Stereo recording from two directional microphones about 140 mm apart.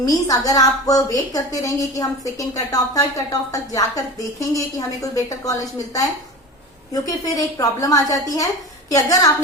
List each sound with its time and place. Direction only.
0.0 s a woman's voice: 25° left (ahead or behind)
7.3 s a woman's voice: 25° left (ahead or behind)